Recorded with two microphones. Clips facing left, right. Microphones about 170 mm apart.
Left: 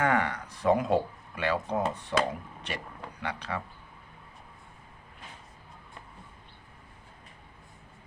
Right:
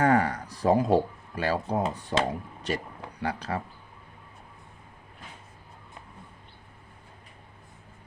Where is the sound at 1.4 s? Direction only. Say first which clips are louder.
Right 2 dB; 35° right (ahead or behind).